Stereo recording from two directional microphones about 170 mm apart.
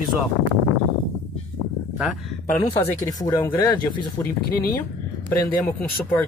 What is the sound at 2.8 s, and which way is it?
Speech, 20° left (ahead or behind).